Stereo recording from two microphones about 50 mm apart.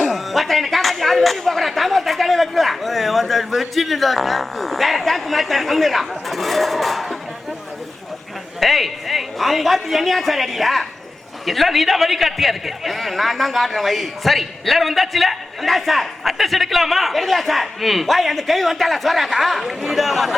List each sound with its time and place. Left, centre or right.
0.1 s a man's voice: centre
8.6 s a man's voice: centre